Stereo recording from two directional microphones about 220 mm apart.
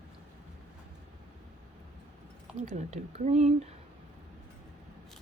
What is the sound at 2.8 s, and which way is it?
Speech, 30° right (ahead or behind).